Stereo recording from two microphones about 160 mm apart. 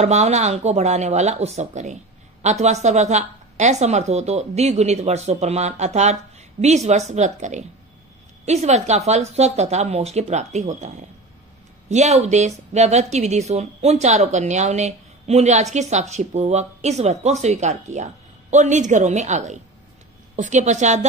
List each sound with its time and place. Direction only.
0.0 s a woman's voice: 45° right (ahead or behind)